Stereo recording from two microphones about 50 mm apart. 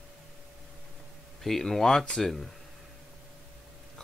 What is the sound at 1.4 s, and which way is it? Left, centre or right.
Speech, centre.